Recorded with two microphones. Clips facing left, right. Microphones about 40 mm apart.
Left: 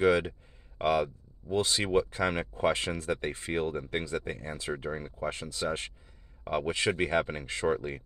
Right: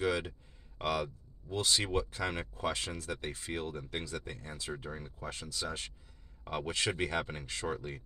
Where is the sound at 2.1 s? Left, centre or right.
Left.